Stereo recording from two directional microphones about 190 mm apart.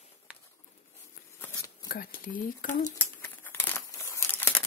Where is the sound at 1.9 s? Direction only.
45° left (ahead or behind).